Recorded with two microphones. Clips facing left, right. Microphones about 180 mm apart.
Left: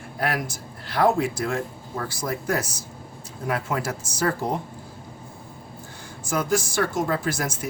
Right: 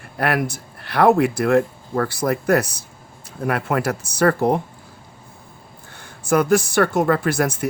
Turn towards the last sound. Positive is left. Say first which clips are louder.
# right 7 dB
turn(degrees=-60)  # may be behind; listen again after turning